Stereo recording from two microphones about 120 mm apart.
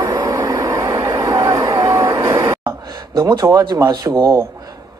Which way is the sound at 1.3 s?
30° right (ahead or behind).